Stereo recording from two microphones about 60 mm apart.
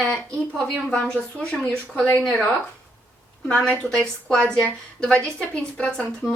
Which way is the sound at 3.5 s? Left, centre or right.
Centre.